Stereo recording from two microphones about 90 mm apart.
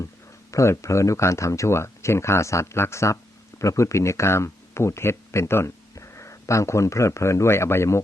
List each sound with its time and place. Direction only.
0.5 s speech: 35° left (ahead or behind)